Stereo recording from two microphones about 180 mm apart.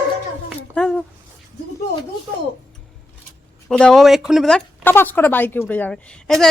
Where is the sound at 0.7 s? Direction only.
5° left (ahead or behind).